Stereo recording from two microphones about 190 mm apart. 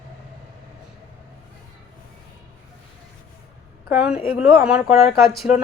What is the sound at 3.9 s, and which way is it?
Speech, 5° right (ahead or behind).